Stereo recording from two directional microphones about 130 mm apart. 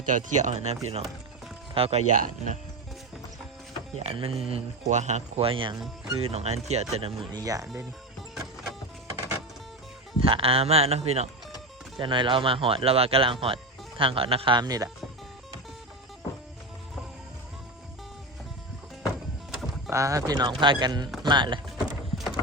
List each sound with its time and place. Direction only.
0.0 s speech: 75° right (ahead or behind)
4.0 s speech: 45° right (ahead or behind)
5.5 s speech: 40° right (ahead or behind)
6.1 s speech: 50° right (ahead or behind); by 7.7 s 25° right (ahead or behind)
10.2 s speech: 45° right (ahead or behind)
11.9 s speech: 40° right (ahead or behind)
19.9 s speech: 25° right (ahead or behind)
21.8 s a sound: 5° right (ahead or behind)